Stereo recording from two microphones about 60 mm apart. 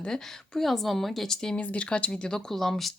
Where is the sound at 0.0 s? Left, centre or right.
Centre.